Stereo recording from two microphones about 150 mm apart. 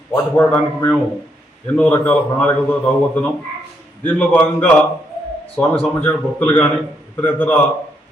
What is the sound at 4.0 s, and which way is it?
Speech, 15° left (ahead or behind).